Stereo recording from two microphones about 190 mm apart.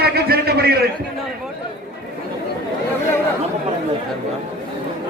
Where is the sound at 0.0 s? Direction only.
55° right (ahead or behind).